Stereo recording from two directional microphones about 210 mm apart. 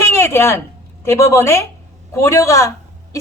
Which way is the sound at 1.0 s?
10° left (ahead or behind).